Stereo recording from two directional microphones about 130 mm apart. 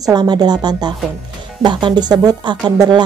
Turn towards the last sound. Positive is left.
turn(degrees=-30)  # may be behind; listen again after turning